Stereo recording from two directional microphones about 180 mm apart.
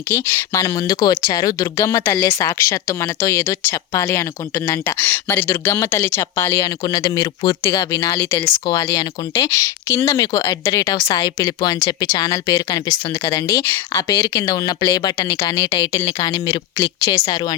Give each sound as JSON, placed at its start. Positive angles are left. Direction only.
{"t": 0.1, "sound": "speech", "side_deg": 15}
{"t": 8.5, "sound": "speech", "side_deg": 25}